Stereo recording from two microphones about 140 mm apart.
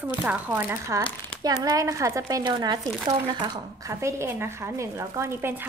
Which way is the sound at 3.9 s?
20° right (ahead or behind).